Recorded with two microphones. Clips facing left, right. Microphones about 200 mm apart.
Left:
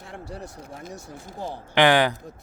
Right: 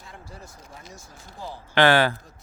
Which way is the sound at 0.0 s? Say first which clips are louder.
Left 7 dB; 70° left (ahead or behind).